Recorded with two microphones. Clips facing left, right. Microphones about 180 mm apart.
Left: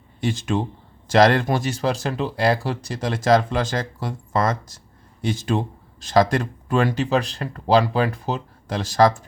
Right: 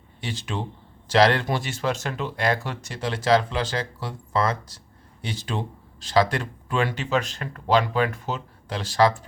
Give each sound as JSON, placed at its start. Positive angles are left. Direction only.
{"t": 0.2, "sound": "speech", "side_deg": 45}